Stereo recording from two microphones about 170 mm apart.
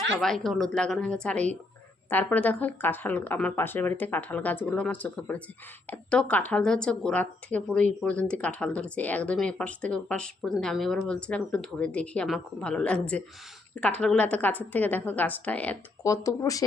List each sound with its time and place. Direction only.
0.2 s a woman's voice: centre (ahead or behind)
16.0 s speech: 20° left (ahead or behind)